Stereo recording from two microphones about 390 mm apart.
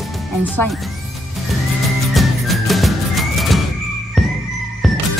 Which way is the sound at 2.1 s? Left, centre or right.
Centre.